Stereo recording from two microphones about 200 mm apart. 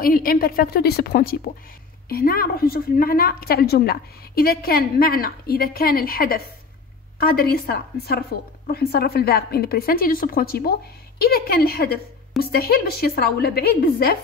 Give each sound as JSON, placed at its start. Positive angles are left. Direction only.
{"t": 0.0, "sound": "a woman's voice", "side_deg": 45}